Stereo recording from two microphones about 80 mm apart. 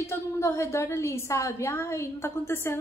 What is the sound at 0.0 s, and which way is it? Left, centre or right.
A woman's voice, left.